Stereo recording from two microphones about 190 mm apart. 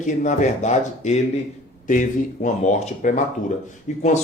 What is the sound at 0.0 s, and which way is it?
Speech, 40° left (ahead or behind).